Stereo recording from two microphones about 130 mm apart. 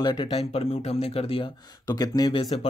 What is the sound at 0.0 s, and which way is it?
Speech, 35° left (ahead or behind).